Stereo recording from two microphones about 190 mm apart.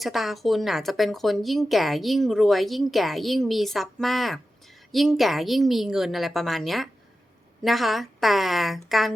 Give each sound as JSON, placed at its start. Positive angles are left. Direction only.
{"t": 0.0, "sound": "speech", "side_deg": 0}